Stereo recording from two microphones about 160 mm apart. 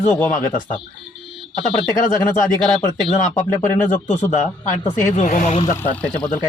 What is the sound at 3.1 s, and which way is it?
A man's voice, 50° left (ahead or behind).